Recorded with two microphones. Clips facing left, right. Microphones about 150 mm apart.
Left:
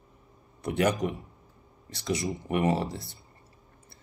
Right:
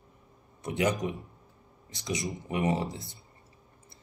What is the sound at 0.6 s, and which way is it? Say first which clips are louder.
Speech: left 2 dB; 20° right (ahead or behind).